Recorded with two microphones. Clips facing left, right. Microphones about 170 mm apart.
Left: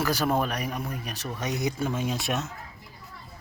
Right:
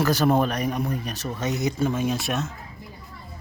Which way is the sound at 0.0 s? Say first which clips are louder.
Right 5 dB; 10° left (ahead or behind).